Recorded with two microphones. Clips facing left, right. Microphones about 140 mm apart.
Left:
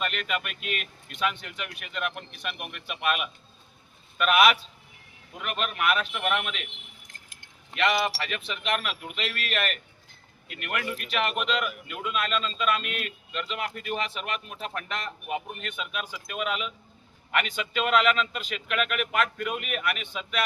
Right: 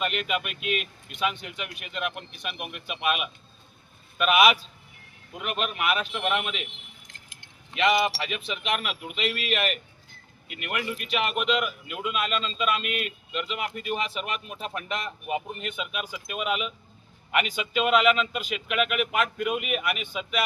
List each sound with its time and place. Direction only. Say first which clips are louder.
0.0 s speech: right 2 dB; 5° right (ahead or behind)
7.1 s squish: right 1 dB; 45° left (ahead or behind)
7.8 s speech: right 2 dB; centre (ahead or behind)